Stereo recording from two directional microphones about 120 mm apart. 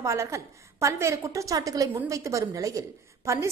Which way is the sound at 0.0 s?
25° right (ahead or behind).